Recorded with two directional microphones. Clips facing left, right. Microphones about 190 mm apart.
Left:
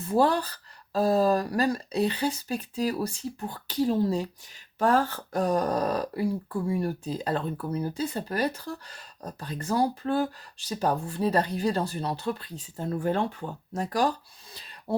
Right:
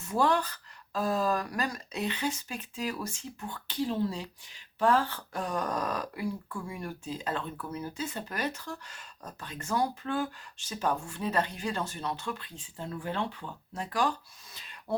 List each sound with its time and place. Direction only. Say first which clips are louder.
0.0 s speech: left 4 dB; 35° left (ahead or behind)